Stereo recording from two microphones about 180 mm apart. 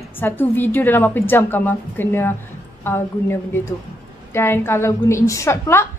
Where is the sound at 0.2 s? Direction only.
10° left (ahead or behind).